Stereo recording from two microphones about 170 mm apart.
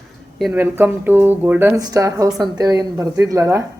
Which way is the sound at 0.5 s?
10° right (ahead or behind).